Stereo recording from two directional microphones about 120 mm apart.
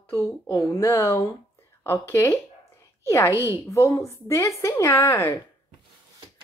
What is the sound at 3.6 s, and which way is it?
A woman's voice, 25° left (ahead or behind).